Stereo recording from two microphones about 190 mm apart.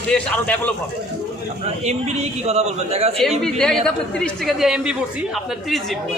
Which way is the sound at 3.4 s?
5° left (ahead or behind).